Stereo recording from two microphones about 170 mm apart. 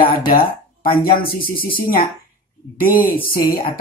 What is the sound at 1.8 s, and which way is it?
Speech, 55° left (ahead or behind).